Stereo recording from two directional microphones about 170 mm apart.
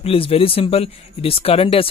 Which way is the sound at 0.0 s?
35° left (ahead or behind).